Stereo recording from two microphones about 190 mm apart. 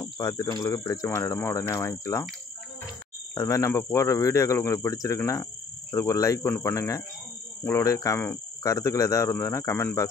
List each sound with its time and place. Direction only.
0.0 s speech: 15° left (ahead or behind)
3.3 s speech: 15° left (ahead or behind)